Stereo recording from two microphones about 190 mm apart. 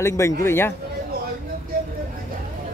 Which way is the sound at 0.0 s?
15° left (ahead or behind).